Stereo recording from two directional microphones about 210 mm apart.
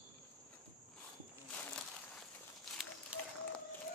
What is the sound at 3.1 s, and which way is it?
Run, 5° right (ahead or behind).